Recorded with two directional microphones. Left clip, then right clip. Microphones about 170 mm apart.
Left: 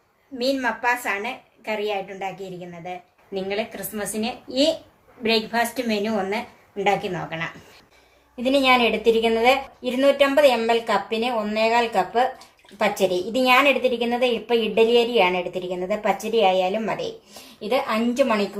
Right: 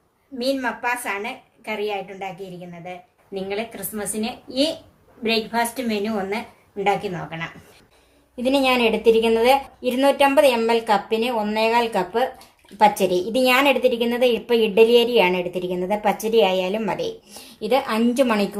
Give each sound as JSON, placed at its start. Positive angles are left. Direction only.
{"t": 0.3, "sound": "a woman's voice", "side_deg": 5}
{"t": 8.4, "sound": "a woman's voice", "side_deg": -35}